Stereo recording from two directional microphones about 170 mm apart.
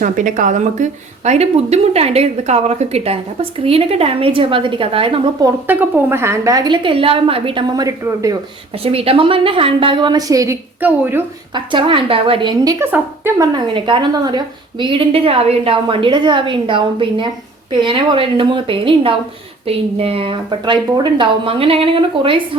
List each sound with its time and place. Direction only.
0.0 s a woman's voice: 50° right (ahead or behind); by 5.5 s 30° right (ahead or behind)
5.6 s a woman's voice: 15° right (ahead or behind)
8.8 s a woman's voice: 35° right (ahead or behind); by 11.2 s 10° right (ahead or behind)
11.5 s a woman's voice: 30° right (ahead or behind)
12.8 s a woman's voice: 15° right (ahead or behind)
13.5 s a woman's voice: 30° right (ahead or behind)